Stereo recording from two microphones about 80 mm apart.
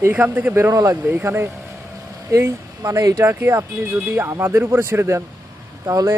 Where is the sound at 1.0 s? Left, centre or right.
Right.